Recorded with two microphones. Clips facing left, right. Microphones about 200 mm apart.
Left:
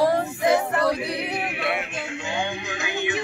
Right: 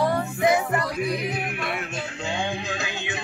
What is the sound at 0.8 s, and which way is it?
Music, 70° left (ahead or behind).